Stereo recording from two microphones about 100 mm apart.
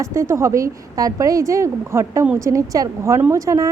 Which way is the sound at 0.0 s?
30° right (ahead or behind).